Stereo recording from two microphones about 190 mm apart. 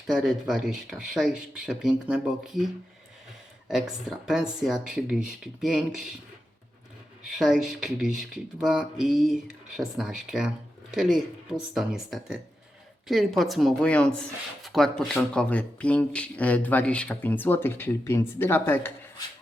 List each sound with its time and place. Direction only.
0.1 s speech: centre (ahead or behind)
3.7 s speech: centre (ahead or behind)
7.3 s speech: centre (ahead or behind)